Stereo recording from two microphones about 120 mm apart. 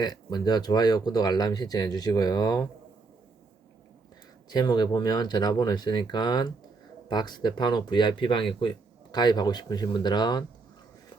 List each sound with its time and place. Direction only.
0.0 s speech: 35° left (ahead or behind)
4.4 s speech: 35° left (ahead or behind)